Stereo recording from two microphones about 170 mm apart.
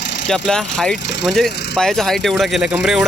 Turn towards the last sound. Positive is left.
turn(degrees=-5)  # may be behind; listen again after turning